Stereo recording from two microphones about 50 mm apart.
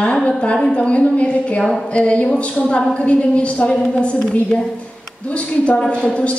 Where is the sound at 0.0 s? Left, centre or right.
Centre.